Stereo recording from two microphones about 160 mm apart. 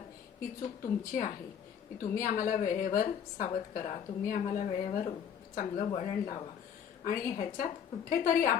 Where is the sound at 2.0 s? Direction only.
55° left (ahead or behind).